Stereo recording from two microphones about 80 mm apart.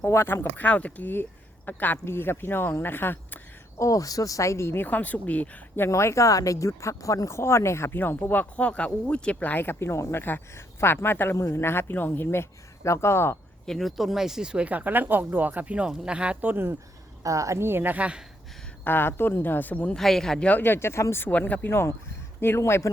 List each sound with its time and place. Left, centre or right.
0.0 s speech: left
3.8 s speech: left
5.9 s speech: left
13.7 s speech: centre; by 16.7 s right
17.2 s speech: right; by 18.2 s centre
18.9 s speech: left
20.0 s speech: centre
20.5 s speech: left
21.7 s speech: left